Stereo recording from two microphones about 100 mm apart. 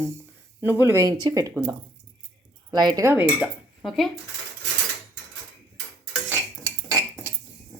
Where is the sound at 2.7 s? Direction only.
45° right (ahead or behind).